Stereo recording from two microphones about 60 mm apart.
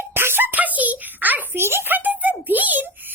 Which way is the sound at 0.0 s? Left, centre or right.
Right.